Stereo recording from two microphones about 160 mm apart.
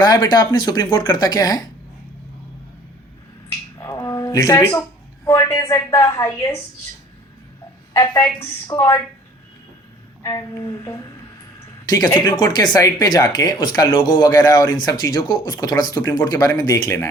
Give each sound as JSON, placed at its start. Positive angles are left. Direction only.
{"t": 0.0, "sound": "speech", "side_deg": 25}
{"t": 3.8, "sound": "a sound", "side_deg": 20}
{"t": 5.2, "sound": "speech", "side_deg": 20}
{"t": 7.9, "sound": "speech", "side_deg": 20}
{"t": 10.2, "sound": "speech", "side_deg": 20}